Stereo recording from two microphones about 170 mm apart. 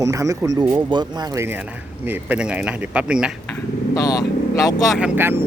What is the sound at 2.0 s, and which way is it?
Speech, 10° right (ahead or behind).